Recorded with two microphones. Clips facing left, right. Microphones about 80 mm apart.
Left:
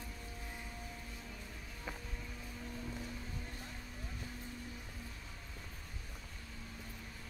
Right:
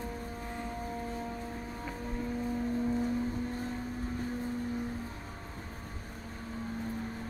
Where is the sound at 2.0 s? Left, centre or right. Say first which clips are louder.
Right 15 dB; right.